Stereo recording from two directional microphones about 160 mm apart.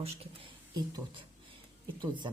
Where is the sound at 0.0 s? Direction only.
35° right (ahead or behind).